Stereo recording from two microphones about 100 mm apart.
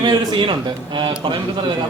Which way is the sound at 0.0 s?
45° right (ahead or behind).